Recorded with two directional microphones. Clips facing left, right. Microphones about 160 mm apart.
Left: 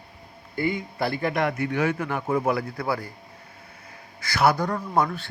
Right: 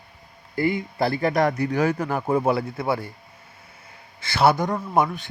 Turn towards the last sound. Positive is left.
turn(degrees=-20)  # may be behind; listen again after turning